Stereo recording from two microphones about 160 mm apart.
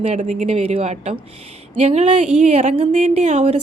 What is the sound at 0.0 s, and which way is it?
A woman's voice, 45° right (ahead or behind).